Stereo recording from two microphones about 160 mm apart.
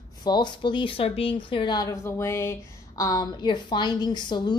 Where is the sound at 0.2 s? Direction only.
25° left (ahead or behind).